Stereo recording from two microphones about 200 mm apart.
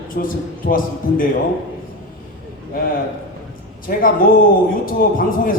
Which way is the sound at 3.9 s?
45° left (ahead or behind).